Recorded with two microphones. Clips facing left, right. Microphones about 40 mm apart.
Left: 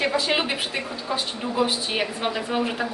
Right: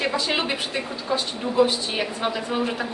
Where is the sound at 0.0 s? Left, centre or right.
Centre.